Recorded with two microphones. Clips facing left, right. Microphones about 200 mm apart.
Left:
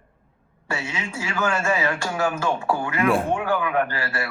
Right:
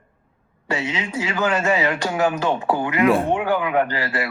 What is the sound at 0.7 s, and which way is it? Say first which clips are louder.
A man's voice: right 5 dB; 20° right (ahead or behind).